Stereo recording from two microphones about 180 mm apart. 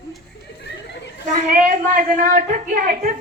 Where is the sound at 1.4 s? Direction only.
50° right (ahead or behind).